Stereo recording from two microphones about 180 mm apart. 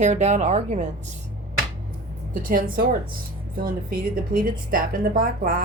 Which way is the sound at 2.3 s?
50° right (ahead or behind).